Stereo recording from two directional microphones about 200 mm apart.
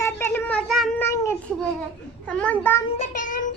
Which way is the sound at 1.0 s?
15° left (ahead or behind).